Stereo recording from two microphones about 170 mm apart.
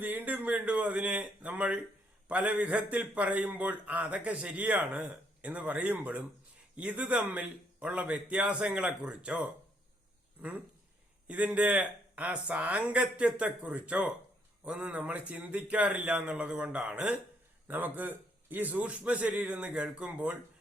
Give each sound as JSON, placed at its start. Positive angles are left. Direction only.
{"t": 0.0, "sound": "a man's voice", "side_deg": -10}
{"t": 11.3, "sound": "a man's voice", "side_deg": -10}